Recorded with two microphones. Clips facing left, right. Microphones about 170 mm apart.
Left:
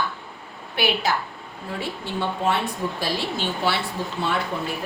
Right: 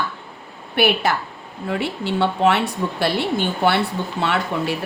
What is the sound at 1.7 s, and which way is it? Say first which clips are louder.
A woman's voice: right 6 dB; 75° right (ahead or behind).